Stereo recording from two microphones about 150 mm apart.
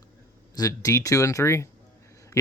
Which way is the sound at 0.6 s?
25° left (ahead or behind).